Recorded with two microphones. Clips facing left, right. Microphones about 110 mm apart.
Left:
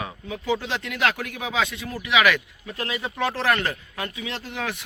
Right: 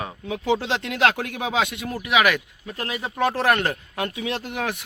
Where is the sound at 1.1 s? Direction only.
25° right (ahead or behind).